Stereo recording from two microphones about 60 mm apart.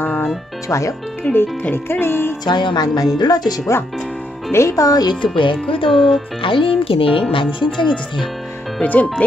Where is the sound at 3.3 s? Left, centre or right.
Left.